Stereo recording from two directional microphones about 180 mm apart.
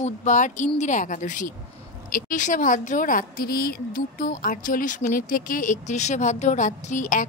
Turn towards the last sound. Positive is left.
turn(degrees=45)  # may be behind; listen again after turning